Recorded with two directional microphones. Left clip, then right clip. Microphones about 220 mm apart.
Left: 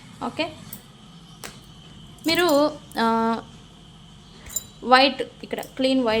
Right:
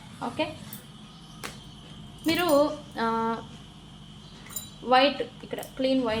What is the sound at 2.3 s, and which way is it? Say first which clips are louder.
A woman's voice: left 3 dB; 50° left (ahead or behind).